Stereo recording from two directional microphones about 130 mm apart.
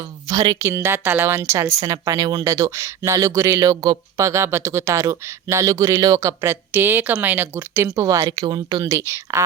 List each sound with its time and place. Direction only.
0.3 s a woman's voice: 30° right (ahead or behind)